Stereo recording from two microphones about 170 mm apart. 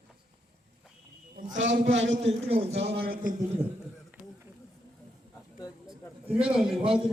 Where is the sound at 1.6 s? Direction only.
90° right.